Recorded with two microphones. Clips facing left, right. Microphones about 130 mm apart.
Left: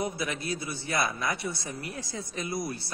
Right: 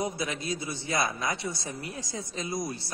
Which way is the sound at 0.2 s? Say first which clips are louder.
Even; 20° right (ahead or behind).